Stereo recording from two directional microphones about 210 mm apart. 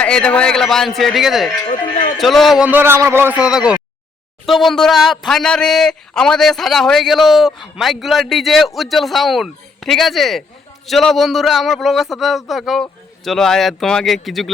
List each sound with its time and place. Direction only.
0.0 s speech: 5° left (ahead or behind)
1.6 s speech: 25° left (ahead or behind)
2.1 s speech: centre (ahead or behind)